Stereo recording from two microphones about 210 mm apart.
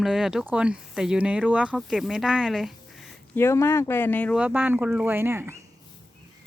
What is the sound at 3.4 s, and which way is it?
Speech, 10° left (ahead or behind).